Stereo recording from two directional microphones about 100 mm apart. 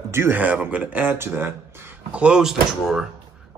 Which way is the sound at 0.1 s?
25° right (ahead or behind).